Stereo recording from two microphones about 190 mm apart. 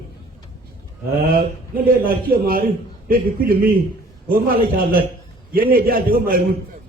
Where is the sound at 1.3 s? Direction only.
50° right (ahead or behind).